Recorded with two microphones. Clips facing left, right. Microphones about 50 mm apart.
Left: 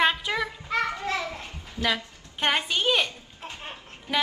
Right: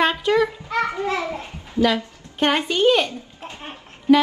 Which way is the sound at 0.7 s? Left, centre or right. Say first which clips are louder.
Right 5 dB; right.